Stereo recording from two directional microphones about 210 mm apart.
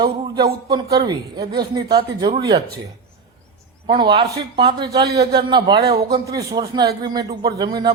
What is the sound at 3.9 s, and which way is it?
Speech, 20° right (ahead or behind).